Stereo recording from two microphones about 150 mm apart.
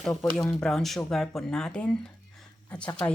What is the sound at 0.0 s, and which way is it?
Speech, 5° left (ahead or behind).